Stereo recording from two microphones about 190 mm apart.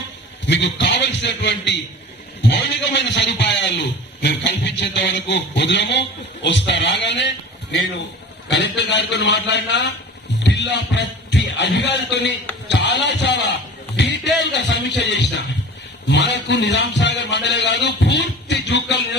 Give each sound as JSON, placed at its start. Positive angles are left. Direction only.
{"t": 0.4, "sound": "a man's voice", "side_deg": 65}